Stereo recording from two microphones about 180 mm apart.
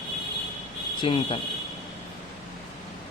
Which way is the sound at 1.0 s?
30° left (ahead or behind).